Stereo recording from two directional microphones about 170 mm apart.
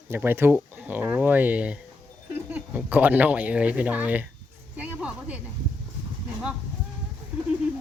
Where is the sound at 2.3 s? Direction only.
10° right (ahead or behind).